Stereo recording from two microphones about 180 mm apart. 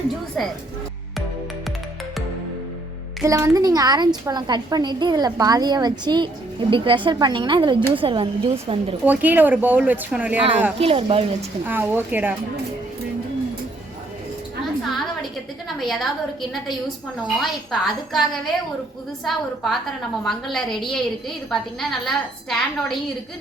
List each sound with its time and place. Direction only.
0.4 s a woman's voice: centre (ahead or behind)
3.2 s a woman's voice: 20° right (ahead or behind)
9.0 s speech: 10° right (ahead or behind)
10.8 s speech: 35° right (ahead or behind)
11.6 s speech: 10° right (ahead or behind)
14.8 s a sound: centre (ahead or behind)
15.8 s a woman's voice: centre (ahead or behind)
17.3 s a woman's voice: centre (ahead or behind)